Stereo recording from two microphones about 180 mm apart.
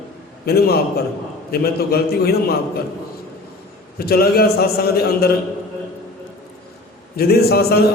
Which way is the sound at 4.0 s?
60° left (ahead or behind).